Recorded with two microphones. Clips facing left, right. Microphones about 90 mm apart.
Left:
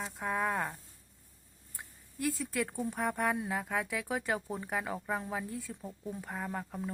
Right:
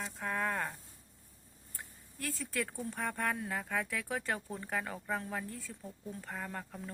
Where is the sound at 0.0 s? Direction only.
10° left (ahead or behind).